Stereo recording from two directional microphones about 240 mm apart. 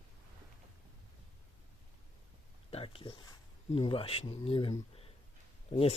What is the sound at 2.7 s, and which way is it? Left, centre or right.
Speech, left.